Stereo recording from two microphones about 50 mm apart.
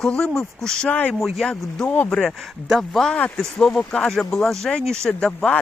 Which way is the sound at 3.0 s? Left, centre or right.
Left.